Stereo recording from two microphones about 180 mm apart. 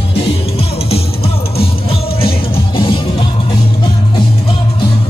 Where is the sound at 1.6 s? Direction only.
30° left (ahead or behind).